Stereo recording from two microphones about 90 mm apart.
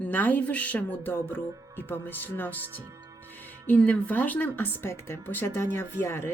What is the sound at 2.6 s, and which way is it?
Speech, 25° right (ahead or behind).